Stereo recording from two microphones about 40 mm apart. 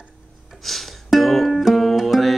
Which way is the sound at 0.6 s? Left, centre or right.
Centre.